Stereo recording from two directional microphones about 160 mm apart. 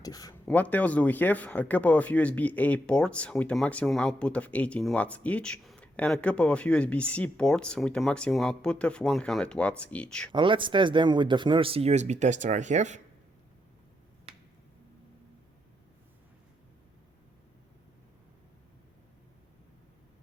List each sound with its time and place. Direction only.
0.0 s speech: 25° left (ahead or behind)
0.4 s speech: 10° left (ahead or behind)
10.3 s speech: 30° right (ahead or behind); by 13.0 s 50° right (ahead or behind)